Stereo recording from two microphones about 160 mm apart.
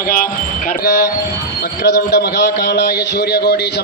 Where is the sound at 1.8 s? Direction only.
90° left.